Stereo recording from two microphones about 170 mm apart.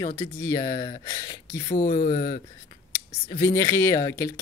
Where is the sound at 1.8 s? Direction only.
50° left (ahead or behind).